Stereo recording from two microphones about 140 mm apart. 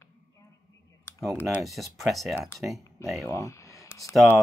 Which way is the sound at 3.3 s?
20° left (ahead or behind).